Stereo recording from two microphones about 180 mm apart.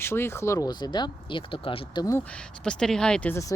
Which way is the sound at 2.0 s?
10° left (ahead or behind).